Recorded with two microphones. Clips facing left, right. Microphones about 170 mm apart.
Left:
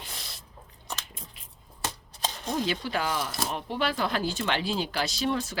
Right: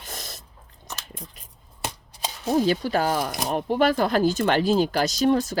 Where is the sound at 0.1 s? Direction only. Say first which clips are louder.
Right 6 dB; 45° right (ahead or behind).